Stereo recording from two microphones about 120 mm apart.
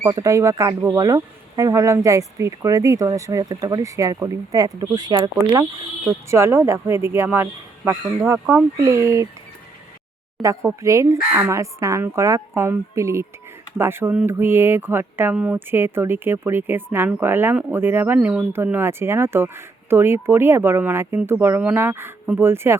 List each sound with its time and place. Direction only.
0.0 s speech: 25° right (ahead or behind)
6.3 s speech: 20° right (ahead or behind)
8.8 s speech: 25° right (ahead or behind)
10.4 s speech: 25° right (ahead or behind)